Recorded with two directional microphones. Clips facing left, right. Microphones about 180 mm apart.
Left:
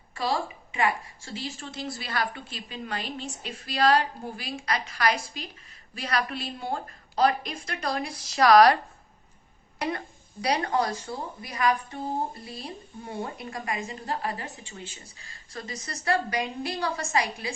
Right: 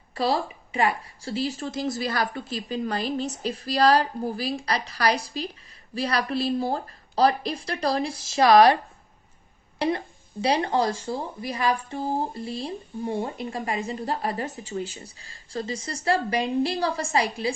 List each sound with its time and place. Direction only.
0.1 s a woman's voice: 35° right (ahead or behind)